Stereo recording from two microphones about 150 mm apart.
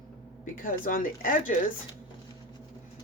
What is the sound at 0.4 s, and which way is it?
Speech, 65° left (ahead or behind).